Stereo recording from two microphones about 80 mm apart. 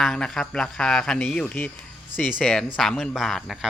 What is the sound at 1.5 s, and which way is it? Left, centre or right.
Speech, centre.